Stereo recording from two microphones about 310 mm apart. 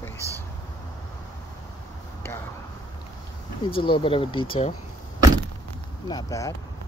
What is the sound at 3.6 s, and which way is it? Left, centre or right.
Speech, centre.